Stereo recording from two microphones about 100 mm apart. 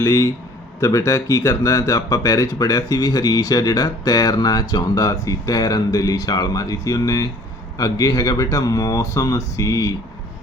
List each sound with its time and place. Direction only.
0.0 s speech: 30° left (ahead or behind)